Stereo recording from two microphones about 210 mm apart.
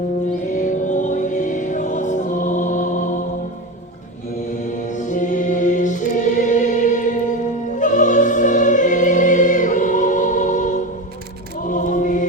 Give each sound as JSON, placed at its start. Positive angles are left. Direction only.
{"t": 0.5, "sound": "music", "side_deg": 35}
{"t": 4.7, "sound": "choir", "side_deg": 35}
{"t": 7.8, "sound": "opera", "side_deg": 35}
{"t": 11.6, "sound": "choir", "side_deg": 35}